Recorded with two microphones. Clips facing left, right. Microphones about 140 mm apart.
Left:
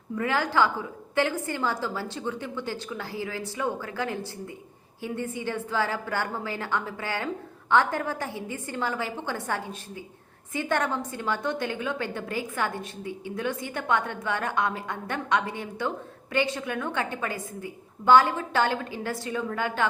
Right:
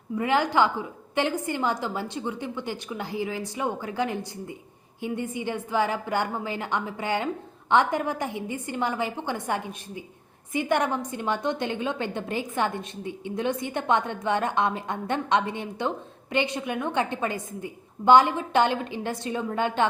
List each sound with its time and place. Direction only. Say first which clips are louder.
0.2 s a woman's voice: right 2 dB; 20° right (ahead or behind)